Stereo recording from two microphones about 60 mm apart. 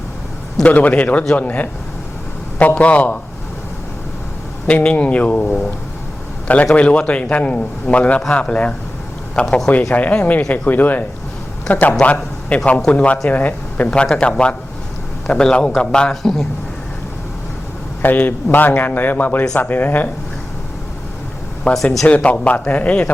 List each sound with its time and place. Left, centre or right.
0.6 s speech: left
4.6 s speech: centre
6.7 s speech: centre
12.1 s a man's voice: centre
18.0 s speech: left
21.7 s speech: left